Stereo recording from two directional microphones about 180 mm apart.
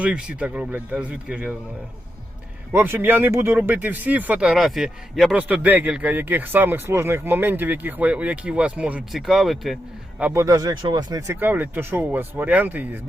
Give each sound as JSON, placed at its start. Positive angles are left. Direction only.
{"t": 0.0, "sound": "speech", "side_deg": -5}
{"t": 2.7, "sound": "speech", "side_deg": -10}
{"t": 10.2, "sound": "speech", "side_deg": -10}
{"t": 11.3, "sound": "speech", "side_deg": -10}